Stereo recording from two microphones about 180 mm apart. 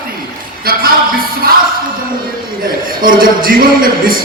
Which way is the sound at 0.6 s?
55° right (ahead or behind).